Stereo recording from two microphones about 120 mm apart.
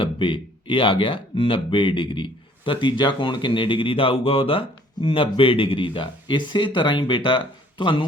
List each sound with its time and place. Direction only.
0.0 s speech: 45° left (ahead or behind)